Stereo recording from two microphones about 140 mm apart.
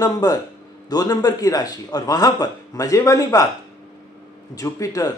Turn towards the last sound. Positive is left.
turn(degrees=25)  # may be behind; listen again after turning